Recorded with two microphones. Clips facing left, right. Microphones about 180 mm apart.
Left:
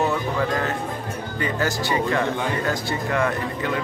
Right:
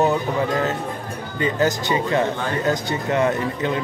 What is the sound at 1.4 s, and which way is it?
Speech, 20° right (ahead or behind).